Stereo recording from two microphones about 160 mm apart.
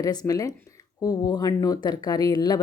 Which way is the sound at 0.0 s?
25° left (ahead or behind).